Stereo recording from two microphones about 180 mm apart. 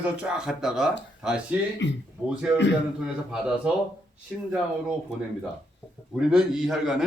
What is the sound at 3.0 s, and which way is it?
Speech, 5° right (ahead or behind).